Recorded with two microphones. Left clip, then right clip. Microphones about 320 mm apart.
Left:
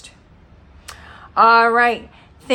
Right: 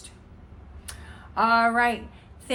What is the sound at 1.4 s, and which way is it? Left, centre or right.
Speech, centre.